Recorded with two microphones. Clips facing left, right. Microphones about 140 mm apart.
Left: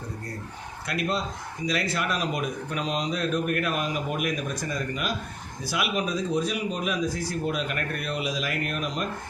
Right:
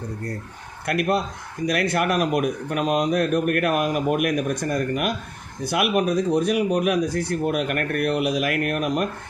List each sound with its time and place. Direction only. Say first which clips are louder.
0.9 s speech: right 6 dB; 55° right (ahead or behind)